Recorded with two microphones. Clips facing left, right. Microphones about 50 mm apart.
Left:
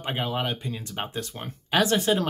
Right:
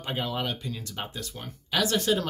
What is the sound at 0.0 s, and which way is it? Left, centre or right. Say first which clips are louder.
Speech: left 2 dB; left.